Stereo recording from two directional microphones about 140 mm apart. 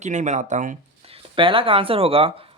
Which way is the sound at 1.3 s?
40° right (ahead or behind).